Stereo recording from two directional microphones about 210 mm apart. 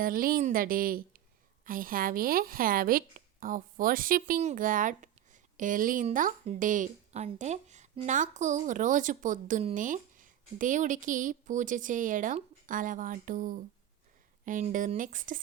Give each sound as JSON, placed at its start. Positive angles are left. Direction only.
{"t": 0.0, "sound": "a woman's voice", "side_deg": -40}